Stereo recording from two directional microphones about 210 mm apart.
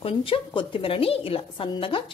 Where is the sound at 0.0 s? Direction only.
25° left (ahead or behind).